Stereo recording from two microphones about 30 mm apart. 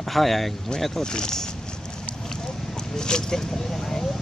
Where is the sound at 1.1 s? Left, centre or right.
Left.